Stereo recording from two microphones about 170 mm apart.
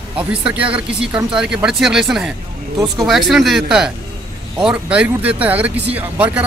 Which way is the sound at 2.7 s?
20° right (ahead or behind).